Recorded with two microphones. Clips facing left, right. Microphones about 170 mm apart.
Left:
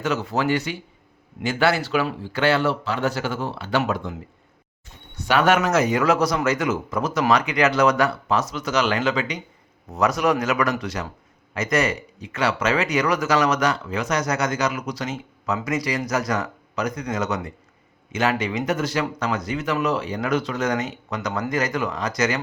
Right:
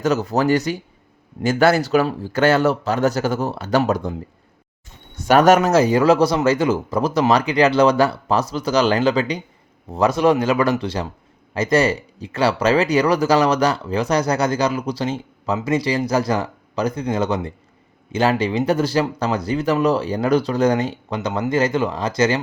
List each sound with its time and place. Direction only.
0.0 s speech: 40° right (ahead or behind)
5.3 s speech: 40° right (ahead or behind)